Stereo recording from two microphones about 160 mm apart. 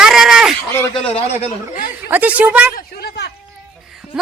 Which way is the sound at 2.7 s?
80° left.